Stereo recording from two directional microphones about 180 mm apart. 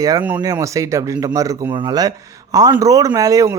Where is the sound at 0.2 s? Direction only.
10° right (ahead or behind).